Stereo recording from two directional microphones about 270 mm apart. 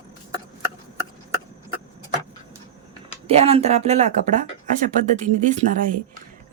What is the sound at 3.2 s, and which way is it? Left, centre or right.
Speech, right.